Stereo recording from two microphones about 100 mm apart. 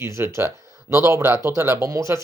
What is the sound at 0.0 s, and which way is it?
Speech, 30° right (ahead or behind).